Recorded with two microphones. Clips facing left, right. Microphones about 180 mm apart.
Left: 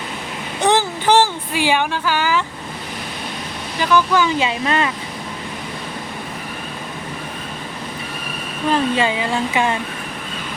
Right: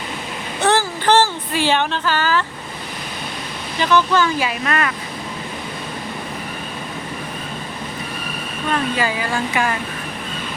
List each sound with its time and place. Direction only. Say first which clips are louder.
0.6 s a sound: left 1 dB; 15° left (ahead or behind)
3.8 s speech: even; 10° left (ahead or behind)
8.7 s speech: left 3 dB; 25° left (ahead or behind)